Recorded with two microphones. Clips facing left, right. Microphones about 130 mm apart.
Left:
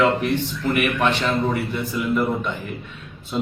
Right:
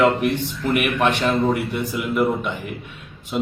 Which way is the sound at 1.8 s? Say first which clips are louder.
Even; 15° right (ahead or behind).